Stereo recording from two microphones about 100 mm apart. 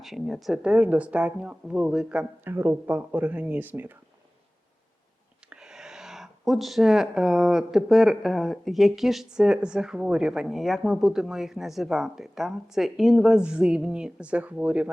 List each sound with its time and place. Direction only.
0.0 s speech: centre (ahead or behind); by 3.9 s 20° right (ahead or behind)
5.5 s speech: 5° right (ahead or behind)